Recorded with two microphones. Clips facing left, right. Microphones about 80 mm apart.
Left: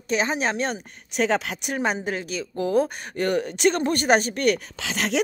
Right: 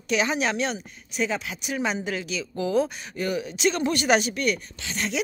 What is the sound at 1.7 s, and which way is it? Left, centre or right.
Speech, left.